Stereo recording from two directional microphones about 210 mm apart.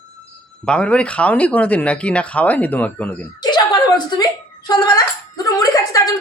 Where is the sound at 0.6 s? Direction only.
5° left (ahead or behind).